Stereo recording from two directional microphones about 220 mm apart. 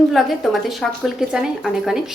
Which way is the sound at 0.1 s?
Centre (ahead or behind).